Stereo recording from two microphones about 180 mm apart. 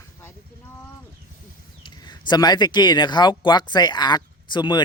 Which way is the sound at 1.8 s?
25° left (ahead or behind).